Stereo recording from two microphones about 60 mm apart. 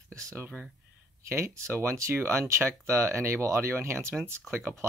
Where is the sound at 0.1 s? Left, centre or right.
Right.